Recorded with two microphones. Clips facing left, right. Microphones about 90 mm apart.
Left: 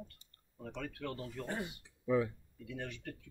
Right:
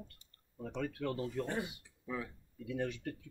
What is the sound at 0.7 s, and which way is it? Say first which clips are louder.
Speech: right 5 dB; 15° right (ahead or behind).